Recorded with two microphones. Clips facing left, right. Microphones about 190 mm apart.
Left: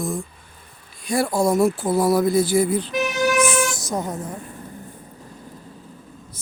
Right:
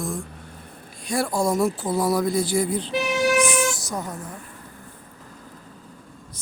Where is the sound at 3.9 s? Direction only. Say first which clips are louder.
Left 5 dB; 25° left (ahead or behind).